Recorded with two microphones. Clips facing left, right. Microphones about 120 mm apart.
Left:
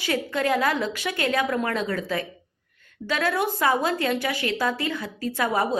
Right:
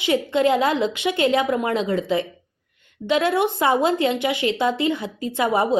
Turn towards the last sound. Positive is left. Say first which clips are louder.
# right 4 dB
turn(degrees=-20)  # may be behind; listen again after turning